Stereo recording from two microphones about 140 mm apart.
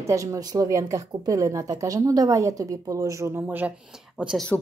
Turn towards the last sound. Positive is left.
turn(degrees=0)  # may be behind; listen again after turning